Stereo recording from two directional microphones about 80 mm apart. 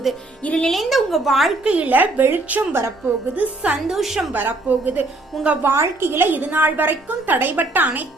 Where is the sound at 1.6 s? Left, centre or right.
Centre.